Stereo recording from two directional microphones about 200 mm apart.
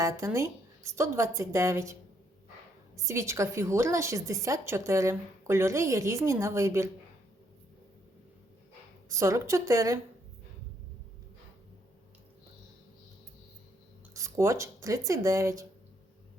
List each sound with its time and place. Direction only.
0.0 s a woman's voice: 15° right (ahead or behind)
9.0 s a woman's voice: 15° right (ahead or behind)
14.1 s speech: 15° right (ahead or behind)